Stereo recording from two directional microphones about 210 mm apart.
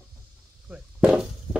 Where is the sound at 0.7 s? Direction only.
5° right (ahead or behind).